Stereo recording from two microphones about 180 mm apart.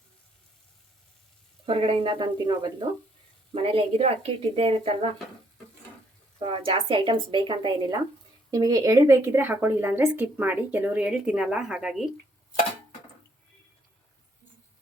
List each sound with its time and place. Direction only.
1.6 s a woman's voice: 30° right (ahead or behind)
6.4 s a woman's voice: 30° right (ahead or behind); by 12.0 s 5° right (ahead or behind)